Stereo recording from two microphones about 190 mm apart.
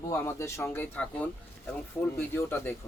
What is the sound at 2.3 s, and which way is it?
Speech, 10° left (ahead or behind).